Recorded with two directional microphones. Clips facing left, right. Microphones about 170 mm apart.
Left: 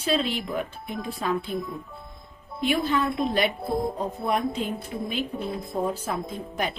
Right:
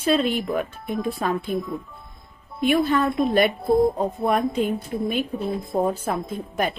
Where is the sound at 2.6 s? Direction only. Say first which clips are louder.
Right 4 dB; 50° right (ahead or behind).